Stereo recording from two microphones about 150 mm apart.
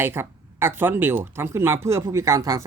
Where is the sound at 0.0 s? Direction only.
15° right (ahead or behind).